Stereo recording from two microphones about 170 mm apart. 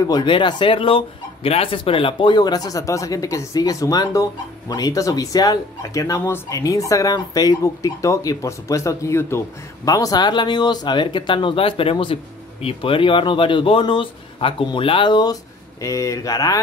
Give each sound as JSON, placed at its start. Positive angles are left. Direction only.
{"t": 0.1, "sound": "speech", "side_deg": 25}